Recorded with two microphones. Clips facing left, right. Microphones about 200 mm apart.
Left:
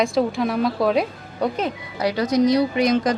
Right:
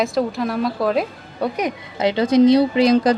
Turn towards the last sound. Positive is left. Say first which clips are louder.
# right 4 dB
turn(degrees=-30)  # may be behind; listen again after turning